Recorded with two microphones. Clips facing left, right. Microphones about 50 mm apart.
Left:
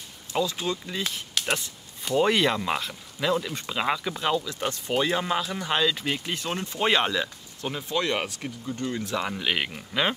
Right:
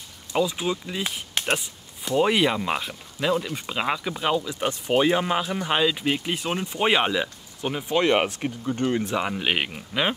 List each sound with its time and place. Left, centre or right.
0.3 s speech: centre; by 9.0 s right
9.0 s speech: right
9.8 s speech: centre